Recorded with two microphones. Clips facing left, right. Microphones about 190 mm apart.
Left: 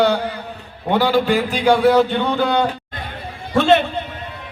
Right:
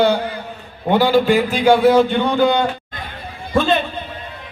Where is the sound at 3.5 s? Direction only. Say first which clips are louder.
Left 3 dB; 75° left (ahead or behind).